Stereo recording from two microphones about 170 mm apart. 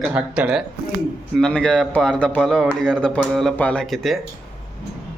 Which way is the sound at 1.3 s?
5° left (ahead or behind).